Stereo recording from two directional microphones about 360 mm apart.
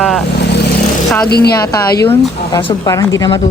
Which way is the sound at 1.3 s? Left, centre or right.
Left.